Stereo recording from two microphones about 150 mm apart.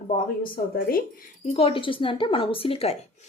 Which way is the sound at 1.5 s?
35° left (ahead or behind).